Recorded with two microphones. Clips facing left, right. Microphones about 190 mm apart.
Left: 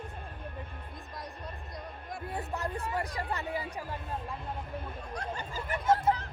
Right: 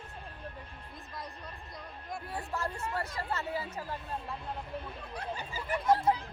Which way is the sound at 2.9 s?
15° left (ahead or behind).